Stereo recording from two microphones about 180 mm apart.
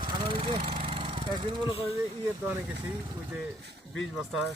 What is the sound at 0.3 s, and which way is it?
Vehicle, 30° right (ahead or behind).